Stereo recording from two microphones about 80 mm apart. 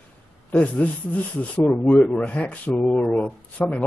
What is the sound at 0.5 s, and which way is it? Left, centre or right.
Speech, centre.